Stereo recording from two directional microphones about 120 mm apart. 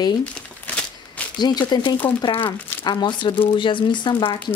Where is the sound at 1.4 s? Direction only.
35° left (ahead or behind).